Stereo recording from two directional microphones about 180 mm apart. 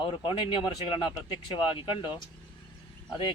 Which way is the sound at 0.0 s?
25° left (ahead or behind).